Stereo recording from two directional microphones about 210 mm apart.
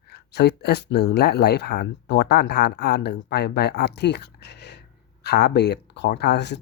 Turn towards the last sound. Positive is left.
turn(degrees=55)  # may be behind; listen again after turning